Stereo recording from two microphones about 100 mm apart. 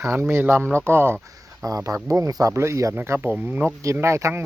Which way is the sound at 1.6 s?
35° right (ahead or behind).